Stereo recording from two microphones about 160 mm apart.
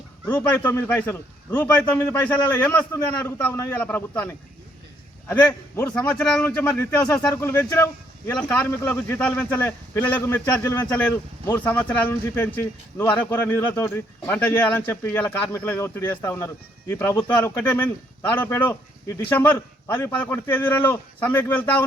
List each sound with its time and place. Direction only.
0.3 s speech: 10° left (ahead or behind)